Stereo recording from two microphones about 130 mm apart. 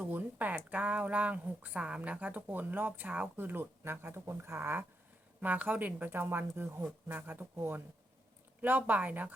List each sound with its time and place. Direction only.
0.0 s speech: 15° right (ahead or behind)